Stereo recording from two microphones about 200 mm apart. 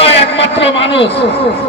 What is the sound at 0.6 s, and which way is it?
Speech, 60° left (ahead or behind).